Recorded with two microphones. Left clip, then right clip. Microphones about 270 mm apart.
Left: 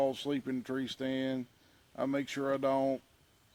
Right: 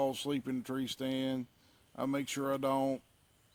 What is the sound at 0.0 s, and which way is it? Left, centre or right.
Speech, right.